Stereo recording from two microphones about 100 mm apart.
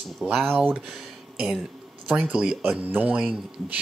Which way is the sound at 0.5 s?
15° right (ahead or behind).